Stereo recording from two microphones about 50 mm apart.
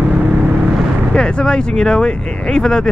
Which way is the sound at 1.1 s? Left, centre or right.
Centre.